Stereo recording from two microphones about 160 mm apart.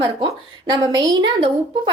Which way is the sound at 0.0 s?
30° right (ahead or behind).